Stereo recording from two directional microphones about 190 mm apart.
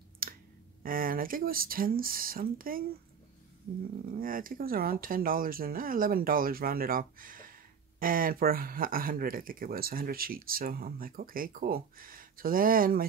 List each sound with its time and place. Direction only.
0.2 s clicking: 50° right (ahead or behind)
0.8 s speech: 50° right (ahead or behind)
4.2 s speech: 50° right (ahead or behind)